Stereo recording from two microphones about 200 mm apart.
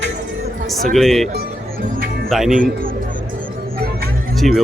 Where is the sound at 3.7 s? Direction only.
50° right (ahead or behind).